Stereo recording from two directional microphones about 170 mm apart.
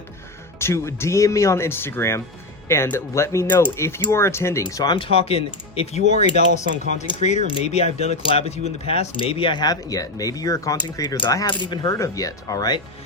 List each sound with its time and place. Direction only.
0.6 s speech: 15° left (ahead or behind)